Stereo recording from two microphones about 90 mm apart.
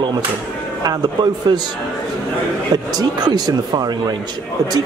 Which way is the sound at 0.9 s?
50° right (ahead or behind).